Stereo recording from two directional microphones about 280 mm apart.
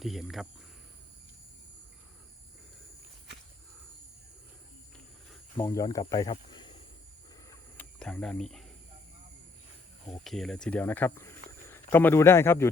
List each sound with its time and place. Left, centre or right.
0.0 s speech: centre
5.5 s speech: centre
7.5 s a sound: centre
10.1 s a man's voice: centre